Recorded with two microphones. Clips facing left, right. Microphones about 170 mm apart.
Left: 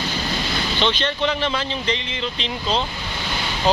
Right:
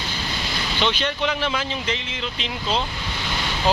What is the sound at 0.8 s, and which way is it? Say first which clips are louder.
Speech: left 1 dB; 10° right (ahead or behind).